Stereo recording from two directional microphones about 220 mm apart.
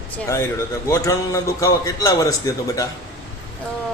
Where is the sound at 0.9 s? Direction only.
15° left (ahead or behind).